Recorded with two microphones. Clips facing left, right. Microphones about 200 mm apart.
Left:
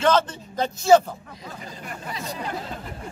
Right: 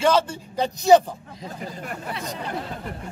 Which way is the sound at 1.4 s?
55° right (ahead or behind).